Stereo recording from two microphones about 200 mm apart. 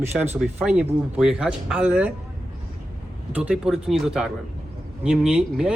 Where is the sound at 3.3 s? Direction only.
5° right (ahead or behind).